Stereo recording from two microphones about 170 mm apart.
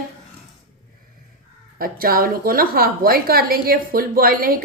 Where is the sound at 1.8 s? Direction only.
60° right (ahead or behind).